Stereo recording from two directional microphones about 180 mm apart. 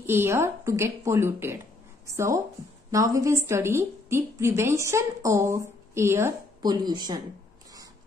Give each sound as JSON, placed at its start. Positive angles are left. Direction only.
{"t": 0.0, "sound": "a woman's voice", "side_deg": -15}